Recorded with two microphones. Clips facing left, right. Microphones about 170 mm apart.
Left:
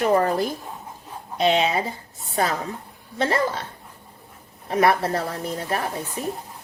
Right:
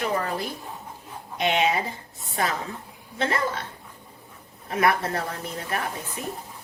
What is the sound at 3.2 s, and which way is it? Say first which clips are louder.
Speech: left 4 dB; 30° left (ahead or behind).